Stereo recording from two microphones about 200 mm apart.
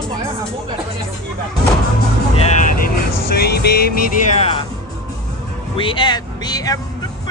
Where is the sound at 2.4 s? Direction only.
40° left (ahead or behind).